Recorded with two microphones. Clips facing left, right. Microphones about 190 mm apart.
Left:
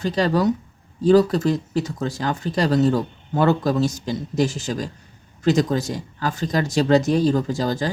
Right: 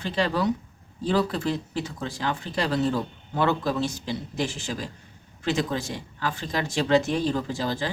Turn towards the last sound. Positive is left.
turn(degrees=40)  # may be behind; listen again after turning